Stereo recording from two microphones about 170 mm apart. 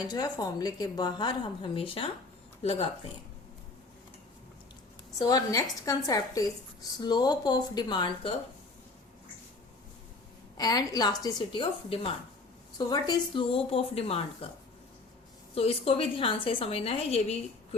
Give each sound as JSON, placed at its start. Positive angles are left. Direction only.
{"t": 0.0, "sound": "a woman's voice", "side_deg": 25}
{"t": 5.2, "sound": "a woman's voice", "side_deg": 20}
{"t": 10.6, "sound": "a woman's voice", "side_deg": 20}
{"t": 15.5, "sound": "a woman's voice", "side_deg": 35}